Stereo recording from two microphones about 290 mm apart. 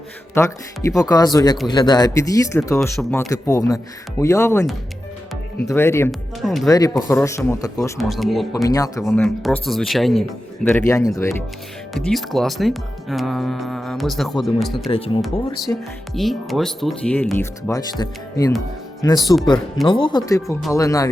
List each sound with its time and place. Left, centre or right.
0.3 s speech: centre
6.7 s speech: centre
8.6 s speech: centre
9.0 s speech: centre
14.8 s speech: centre
15.2 s speech: centre